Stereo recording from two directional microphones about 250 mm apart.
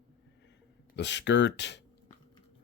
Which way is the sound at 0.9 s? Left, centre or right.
Left.